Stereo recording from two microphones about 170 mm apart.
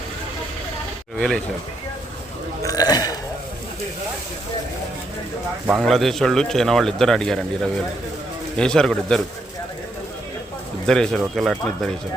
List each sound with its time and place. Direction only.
2.6 s burping: 20° left (ahead or behind)
5.8 s speech: centre (ahead or behind)
10.8 s speech: 5° left (ahead or behind)